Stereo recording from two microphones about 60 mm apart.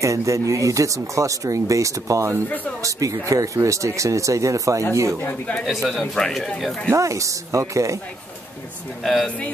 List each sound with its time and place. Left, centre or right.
0.0 s speech: right
5.7 s speech: centre
6.9 s speech: right
9.0 s speech: centre